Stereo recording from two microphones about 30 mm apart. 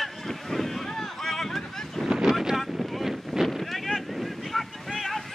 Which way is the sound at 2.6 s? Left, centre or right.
Centre.